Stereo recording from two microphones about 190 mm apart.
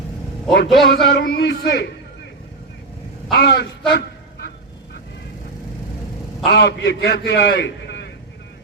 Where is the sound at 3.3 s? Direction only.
55° left (ahead or behind).